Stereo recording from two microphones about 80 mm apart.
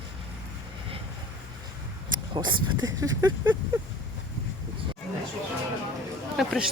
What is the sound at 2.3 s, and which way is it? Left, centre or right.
Speech, right.